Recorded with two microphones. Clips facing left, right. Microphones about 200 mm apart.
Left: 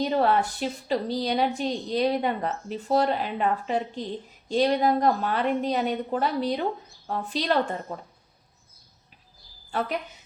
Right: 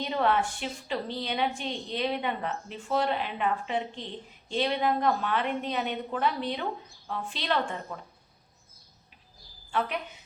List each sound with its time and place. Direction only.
0.0 s a woman's voice: 40° left (ahead or behind)